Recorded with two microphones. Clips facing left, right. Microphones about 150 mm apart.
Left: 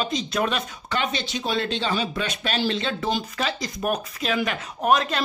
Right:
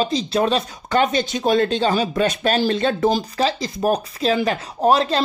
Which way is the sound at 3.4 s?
30° right (ahead or behind).